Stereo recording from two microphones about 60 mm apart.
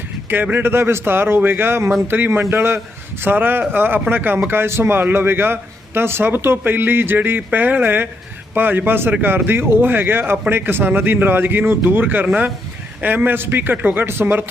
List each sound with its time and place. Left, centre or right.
0.5 s a man's voice: right